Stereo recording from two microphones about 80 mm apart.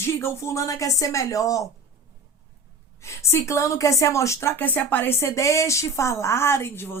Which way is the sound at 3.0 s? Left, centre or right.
Left.